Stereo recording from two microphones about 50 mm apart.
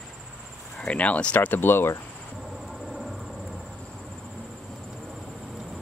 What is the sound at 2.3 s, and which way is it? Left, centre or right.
Cricket, centre.